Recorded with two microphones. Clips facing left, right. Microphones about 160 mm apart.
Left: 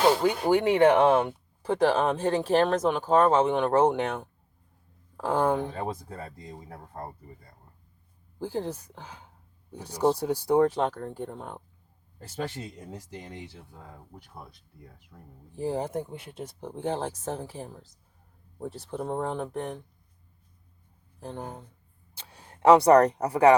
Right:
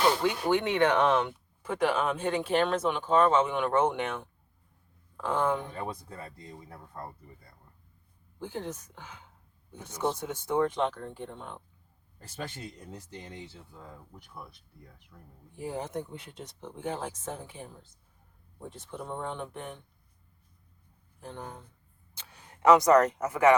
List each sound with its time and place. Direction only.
0.0 s speech: 40° left (ahead or behind)
8.4 s speech: 35° left (ahead or behind)
15.1 s speech: 25° left (ahead or behind)
21.2 s speech: 35° left (ahead or behind)